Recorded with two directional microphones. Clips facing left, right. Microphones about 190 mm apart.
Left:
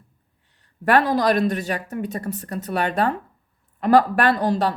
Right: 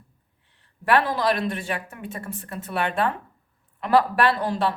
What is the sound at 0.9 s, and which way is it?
Speech, 45° left (ahead or behind).